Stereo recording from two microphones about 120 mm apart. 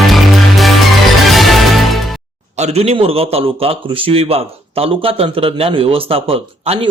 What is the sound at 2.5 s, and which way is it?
Speech, 65° right (ahead or behind).